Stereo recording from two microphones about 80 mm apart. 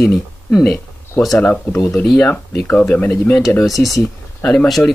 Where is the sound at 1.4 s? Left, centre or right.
Centre.